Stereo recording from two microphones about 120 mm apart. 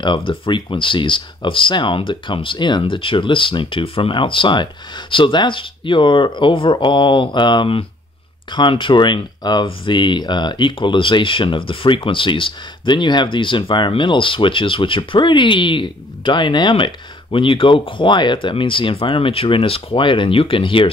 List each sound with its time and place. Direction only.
0.0 s speech: 40° left (ahead or behind)